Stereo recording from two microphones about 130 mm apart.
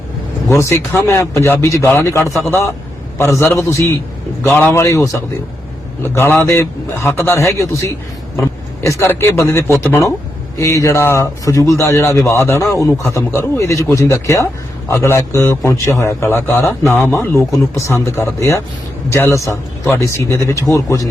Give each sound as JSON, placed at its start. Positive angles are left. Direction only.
{"t": 0.5, "sound": "a man's voice", "side_deg": 20}
{"t": 3.4, "sound": "a man's voice", "side_deg": 15}
{"t": 9.0, "sound": "a man's voice", "side_deg": 20}